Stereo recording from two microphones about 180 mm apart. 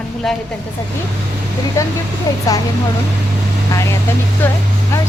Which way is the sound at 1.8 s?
15° left (ahead or behind).